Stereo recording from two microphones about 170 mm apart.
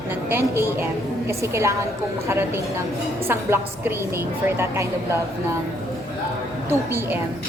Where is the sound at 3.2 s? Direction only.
15° right (ahead or behind).